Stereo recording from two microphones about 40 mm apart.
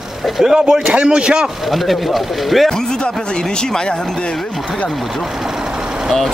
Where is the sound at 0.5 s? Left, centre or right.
Centre.